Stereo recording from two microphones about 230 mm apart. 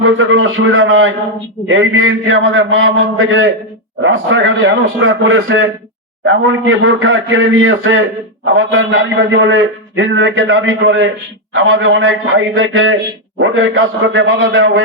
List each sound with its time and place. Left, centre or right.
0.0 s a man's voice: right